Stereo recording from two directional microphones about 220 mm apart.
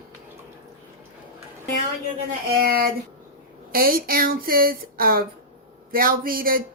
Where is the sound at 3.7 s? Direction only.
40° right (ahead or behind).